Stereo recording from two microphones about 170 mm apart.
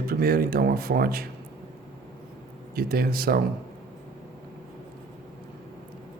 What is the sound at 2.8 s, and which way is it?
Speech, 60° right (ahead or behind).